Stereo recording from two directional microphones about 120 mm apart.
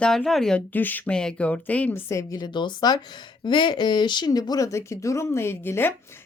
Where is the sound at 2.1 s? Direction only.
25° left (ahead or behind).